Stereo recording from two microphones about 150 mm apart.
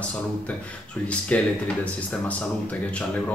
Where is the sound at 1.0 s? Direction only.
10° left (ahead or behind).